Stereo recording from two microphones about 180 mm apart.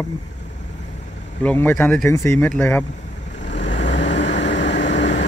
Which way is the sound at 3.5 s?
80° left.